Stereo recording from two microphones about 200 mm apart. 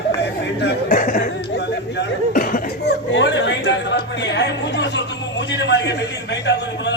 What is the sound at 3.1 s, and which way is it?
Speech, 65° left (ahead or behind).